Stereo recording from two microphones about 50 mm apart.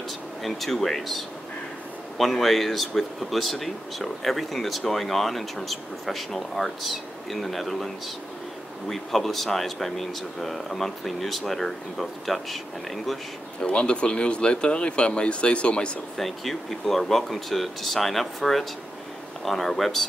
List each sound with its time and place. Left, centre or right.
0.4 s speech: centre
13.6 s speech: left
16.2 s speech: centre